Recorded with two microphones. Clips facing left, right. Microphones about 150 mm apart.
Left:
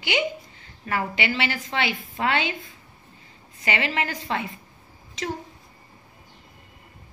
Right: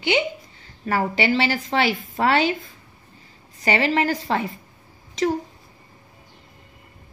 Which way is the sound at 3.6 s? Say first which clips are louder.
Right 6 dB; 35° right (ahead or behind).